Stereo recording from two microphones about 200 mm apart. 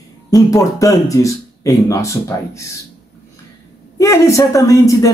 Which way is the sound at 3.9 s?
15° left (ahead or behind).